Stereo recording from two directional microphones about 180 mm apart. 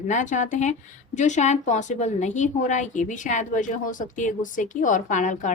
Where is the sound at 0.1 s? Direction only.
45° left (ahead or behind).